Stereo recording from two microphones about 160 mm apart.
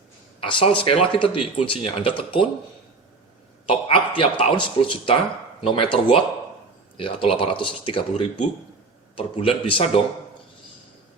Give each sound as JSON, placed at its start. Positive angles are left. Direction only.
{"t": 0.3, "sound": "speech", "side_deg": 35}
{"t": 3.7, "sound": "speech", "side_deg": 35}